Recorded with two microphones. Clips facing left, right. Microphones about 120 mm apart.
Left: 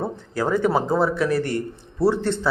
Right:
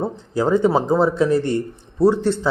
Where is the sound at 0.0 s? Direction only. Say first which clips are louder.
Right 4 dB; 20° right (ahead or behind).